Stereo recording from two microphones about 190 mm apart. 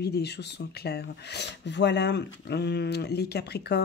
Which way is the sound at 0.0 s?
60° left (ahead or behind).